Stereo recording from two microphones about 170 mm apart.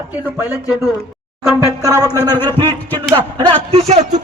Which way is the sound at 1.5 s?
20° left (ahead or behind).